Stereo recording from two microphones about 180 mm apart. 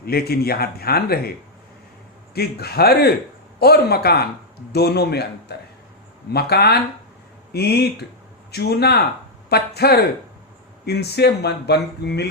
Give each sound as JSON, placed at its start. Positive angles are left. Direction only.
{"t": 0.0, "sound": "speech", "side_deg": 60}
{"t": 2.3, "sound": "speech", "side_deg": 60}